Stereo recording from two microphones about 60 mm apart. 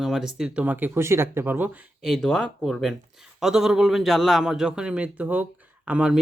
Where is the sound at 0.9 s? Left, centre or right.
Right.